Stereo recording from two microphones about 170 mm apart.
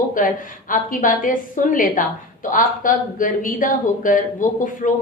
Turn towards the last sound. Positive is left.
turn(degrees=50)  # may be behind; listen again after turning